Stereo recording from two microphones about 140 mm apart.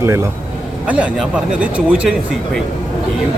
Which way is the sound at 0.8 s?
10° right (ahead or behind).